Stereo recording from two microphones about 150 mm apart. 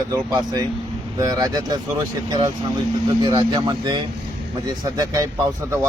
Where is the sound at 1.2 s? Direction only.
25° right (ahead or behind).